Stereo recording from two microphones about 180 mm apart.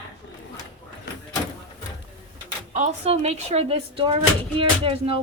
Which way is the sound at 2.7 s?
40° right (ahead or behind).